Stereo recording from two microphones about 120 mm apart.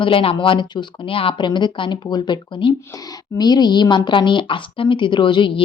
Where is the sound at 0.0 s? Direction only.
45° left (ahead or behind).